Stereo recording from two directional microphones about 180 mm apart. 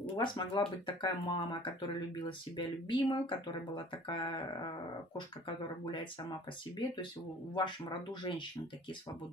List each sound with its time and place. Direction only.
0.1 s speech: 25° left (ahead or behind)
7.5 s speech: 25° left (ahead or behind)